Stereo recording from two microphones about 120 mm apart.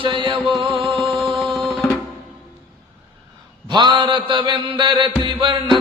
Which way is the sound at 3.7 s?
40° right (ahead or behind).